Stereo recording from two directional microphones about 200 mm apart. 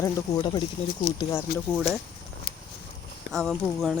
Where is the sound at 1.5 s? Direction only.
50° left (ahead or behind).